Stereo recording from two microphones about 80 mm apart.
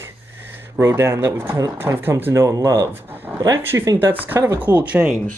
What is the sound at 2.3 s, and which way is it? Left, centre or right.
Speech, right.